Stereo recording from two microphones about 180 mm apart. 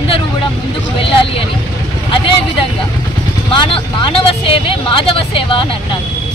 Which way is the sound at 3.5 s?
30° left (ahead or behind).